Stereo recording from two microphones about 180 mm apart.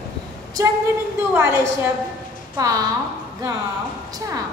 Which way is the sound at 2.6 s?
20° right (ahead or behind).